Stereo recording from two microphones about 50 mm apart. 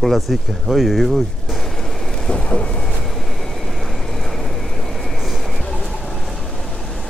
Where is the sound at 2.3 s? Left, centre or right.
Left.